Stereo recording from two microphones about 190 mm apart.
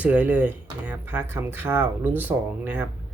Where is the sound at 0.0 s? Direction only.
10° right (ahead or behind).